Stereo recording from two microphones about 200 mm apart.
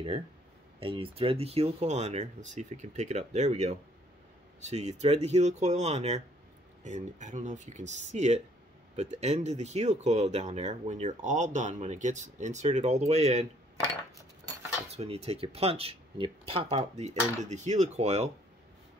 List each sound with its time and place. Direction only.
0.7 s speech: 25° right (ahead or behind)
15.0 s speech: 30° right (ahead or behind)